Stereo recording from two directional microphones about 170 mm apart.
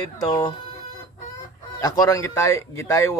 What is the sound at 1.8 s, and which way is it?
Speech, 20° left (ahead or behind).